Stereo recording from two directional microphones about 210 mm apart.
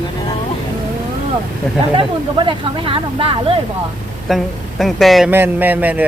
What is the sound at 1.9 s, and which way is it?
Speech, 25° right (ahead or behind).